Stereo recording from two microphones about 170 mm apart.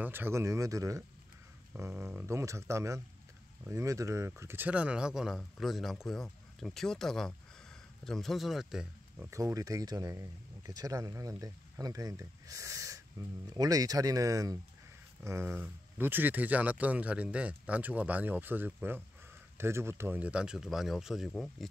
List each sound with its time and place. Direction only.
0.0 s speech: 15° right (ahead or behind)
9.3 s speech: 20° right (ahead or behind); by 21.6 s centre (ahead or behind)